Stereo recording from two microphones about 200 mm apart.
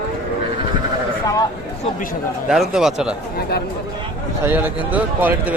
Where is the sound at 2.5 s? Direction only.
Centre (ahead or behind).